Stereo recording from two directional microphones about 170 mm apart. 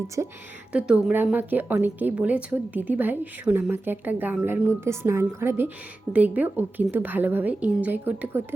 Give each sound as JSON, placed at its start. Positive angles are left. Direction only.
{"t": 0.2, "sound": "a woman's voice", "side_deg": -15}